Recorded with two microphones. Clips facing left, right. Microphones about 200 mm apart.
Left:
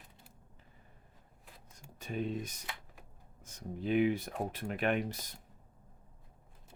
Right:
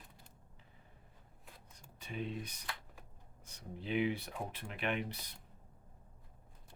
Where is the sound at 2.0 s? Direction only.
45° left (ahead or behind).